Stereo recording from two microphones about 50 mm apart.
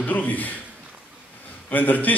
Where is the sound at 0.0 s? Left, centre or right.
Left.